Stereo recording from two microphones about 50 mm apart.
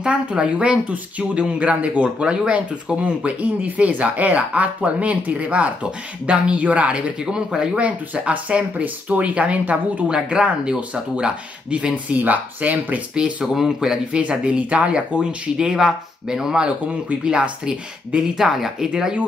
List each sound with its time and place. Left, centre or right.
0.0 s speech: right
7.8 s speech: right
10.1 s speech: centre
13.1 s speech: centre
18.4 s speech: centre